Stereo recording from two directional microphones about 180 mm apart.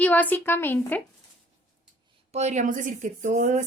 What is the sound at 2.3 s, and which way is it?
Speech, 40° right (ahead or behind).